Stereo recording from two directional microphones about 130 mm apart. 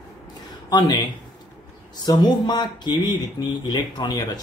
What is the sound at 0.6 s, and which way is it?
Speech, 30° left (ahead or behind).